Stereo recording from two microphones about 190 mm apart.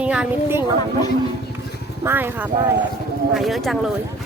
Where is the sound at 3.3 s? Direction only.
Centre (ahead or behind).